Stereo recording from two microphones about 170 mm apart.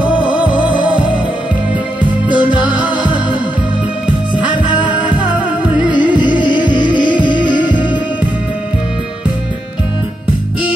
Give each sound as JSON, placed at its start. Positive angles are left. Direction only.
{"t": 0.5, "sound": "music", "side_deg": 30}
{"t": 2.3, "sound": "music", "side_deg": -5}
{"t": 4.9, "sound": "music", "side_deg": -5}
{"t": 6.5, "sound": "music", "side_deg": 30}